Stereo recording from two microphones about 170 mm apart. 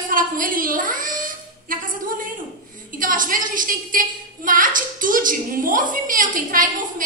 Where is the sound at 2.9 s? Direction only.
55° right (ahead or behind).